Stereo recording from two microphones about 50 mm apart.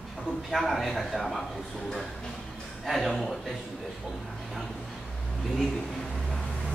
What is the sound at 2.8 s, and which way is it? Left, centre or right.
Speech, centre.